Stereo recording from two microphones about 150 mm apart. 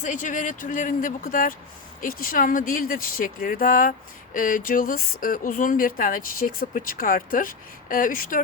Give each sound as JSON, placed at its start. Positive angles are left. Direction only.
{"t": 0.0, "sound": "speech", "side_deg": 55}